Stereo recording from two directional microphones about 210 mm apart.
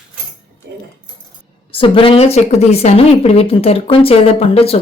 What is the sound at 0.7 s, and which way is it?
Keys jangling, 55° right (ahead or behind).